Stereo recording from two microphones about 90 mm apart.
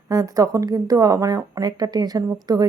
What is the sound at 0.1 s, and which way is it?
A woman's voice, 40° right (ahead or behind).